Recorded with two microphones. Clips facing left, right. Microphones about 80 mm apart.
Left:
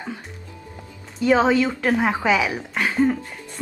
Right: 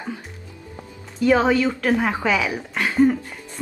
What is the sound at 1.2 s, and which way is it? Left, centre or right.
A woman's voice, centre.